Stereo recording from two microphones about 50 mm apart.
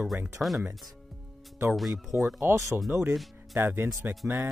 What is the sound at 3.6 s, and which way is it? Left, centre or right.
Speech, right.